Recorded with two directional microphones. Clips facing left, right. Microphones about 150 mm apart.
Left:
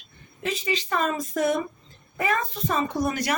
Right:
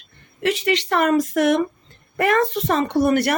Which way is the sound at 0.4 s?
75° right (ahead or behind).